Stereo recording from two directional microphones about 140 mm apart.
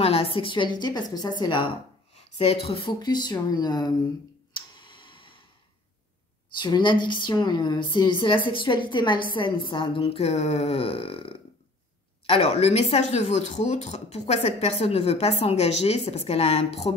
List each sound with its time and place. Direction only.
0.0 s a woman's voice: 45° left (ahead or behind)
2.3 s a woman's voice: 45° left (ahead or behind); by 3.9 s 30° left (ahead or behind)
4.6 s tick: 35° left (ahead or behind)
6.5 s a woman's voice: 35° left (ahead or behind)